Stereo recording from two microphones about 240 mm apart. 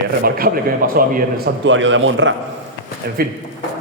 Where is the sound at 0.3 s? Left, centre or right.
Right.